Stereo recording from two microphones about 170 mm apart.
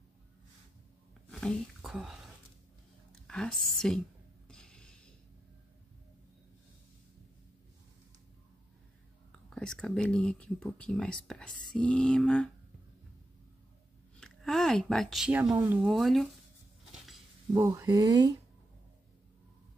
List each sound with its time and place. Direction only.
1.3 s whispering: centre (ahead or behind)
3.3 s speech: 5° left (ahead or behind)
4.5 s mechanisms: 5° left (ahead or behind)
9.3 s speech: 5° left (ahead or behind)
14.2 s speech: 5° left (ahead or behind)
17.5 s speech: 15° right (ahead or behind)